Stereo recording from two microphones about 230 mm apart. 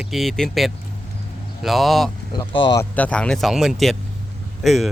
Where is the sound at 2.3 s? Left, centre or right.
Left.